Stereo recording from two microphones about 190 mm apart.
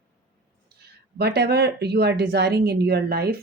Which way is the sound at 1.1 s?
60° right (ahead or behind).